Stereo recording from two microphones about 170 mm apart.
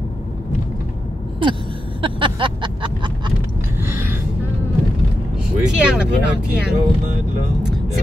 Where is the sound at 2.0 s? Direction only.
30° right (ahead or behind).